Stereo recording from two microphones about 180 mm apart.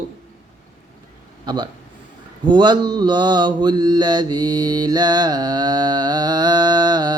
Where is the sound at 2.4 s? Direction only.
25° right (ahead or behind).